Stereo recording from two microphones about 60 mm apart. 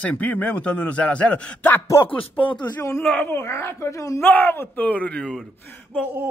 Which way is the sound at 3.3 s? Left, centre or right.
Left.